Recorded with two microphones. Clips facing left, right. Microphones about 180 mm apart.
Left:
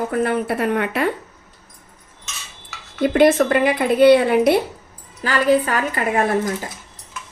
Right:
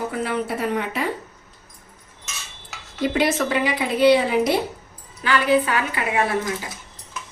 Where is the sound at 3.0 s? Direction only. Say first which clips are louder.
Left 7 dB; 55° left (ahead or behind).